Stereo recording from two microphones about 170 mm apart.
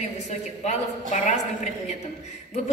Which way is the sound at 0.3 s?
45° left (ahead or behind).